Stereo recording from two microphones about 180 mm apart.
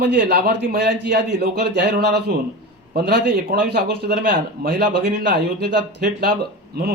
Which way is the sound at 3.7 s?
65° right (ahead or behind).